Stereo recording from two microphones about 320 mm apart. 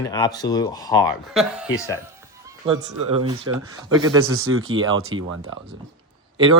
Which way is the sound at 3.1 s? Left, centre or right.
Centre.